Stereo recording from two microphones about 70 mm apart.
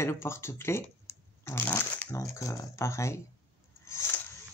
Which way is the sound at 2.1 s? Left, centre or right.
Left.